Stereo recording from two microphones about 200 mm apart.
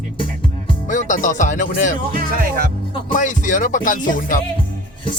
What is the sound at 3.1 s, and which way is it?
Music, 40° left (ahead or behind).